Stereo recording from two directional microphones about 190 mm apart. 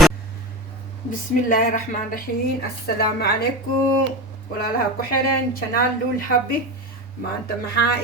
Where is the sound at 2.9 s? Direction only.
55° left (ahead or behind).